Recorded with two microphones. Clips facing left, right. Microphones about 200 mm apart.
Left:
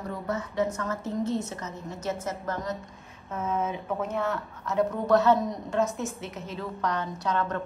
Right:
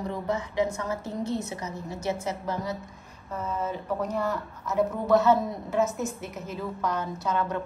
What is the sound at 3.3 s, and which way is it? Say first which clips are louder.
A woman's voice: left 2 dB; 5° left (ahead or behind).